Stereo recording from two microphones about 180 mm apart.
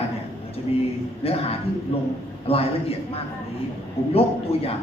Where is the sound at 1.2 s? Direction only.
35° left (ahead or behind).